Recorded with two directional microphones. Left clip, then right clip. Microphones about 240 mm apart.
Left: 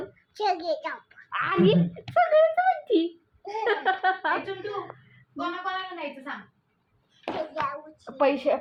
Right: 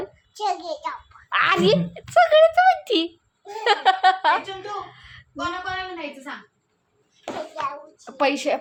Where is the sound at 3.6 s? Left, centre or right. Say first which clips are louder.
Right 7 dB; right.